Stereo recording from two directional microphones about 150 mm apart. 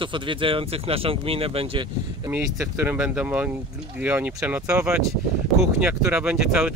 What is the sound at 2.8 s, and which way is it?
Speech, 10° right (ahead or behind).